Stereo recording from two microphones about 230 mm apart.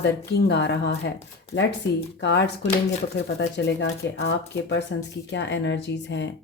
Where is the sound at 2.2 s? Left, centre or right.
Left.